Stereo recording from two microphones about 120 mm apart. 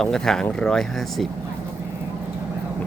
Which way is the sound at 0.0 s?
5° left (ahead or behind).